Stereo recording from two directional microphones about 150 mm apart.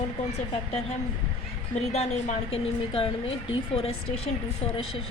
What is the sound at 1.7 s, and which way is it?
A woman's voice, 50° left (ahead or behind).